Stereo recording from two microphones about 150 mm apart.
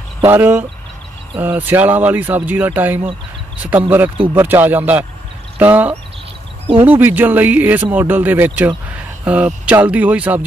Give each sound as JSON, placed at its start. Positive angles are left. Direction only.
{"t": 0.2, "sound": "speech", "side_deg": -15}